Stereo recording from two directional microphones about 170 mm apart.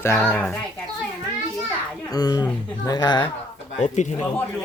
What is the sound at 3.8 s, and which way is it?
Speech, 45° left (ahead or behind).